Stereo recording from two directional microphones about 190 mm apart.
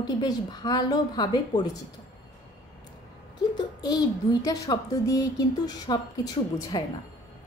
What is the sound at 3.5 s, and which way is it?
A child's voice, 20° left (ahead or behind).